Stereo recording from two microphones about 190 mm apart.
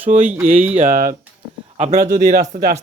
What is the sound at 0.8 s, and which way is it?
Speech, 45° right (ahead or behind).